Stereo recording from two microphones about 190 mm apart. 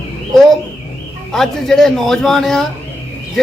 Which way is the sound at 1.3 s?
Centre (ahead or behind).